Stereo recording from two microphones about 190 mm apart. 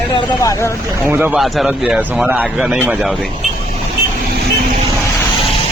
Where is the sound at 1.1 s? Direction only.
10° right (ahead or behind).